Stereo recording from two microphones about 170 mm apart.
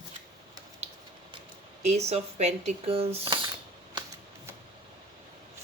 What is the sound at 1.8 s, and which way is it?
Speech, 40° right (ahead or behind).